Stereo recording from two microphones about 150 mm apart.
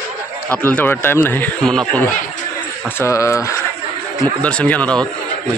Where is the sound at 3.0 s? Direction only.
20° left (ahead or behind).